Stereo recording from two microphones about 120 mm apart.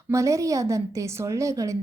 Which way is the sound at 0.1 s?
25° right (ahead or behind).